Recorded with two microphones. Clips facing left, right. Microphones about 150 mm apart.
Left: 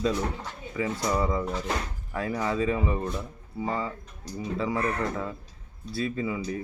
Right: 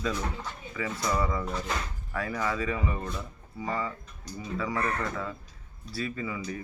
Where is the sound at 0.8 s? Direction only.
30° left (ahead or behind).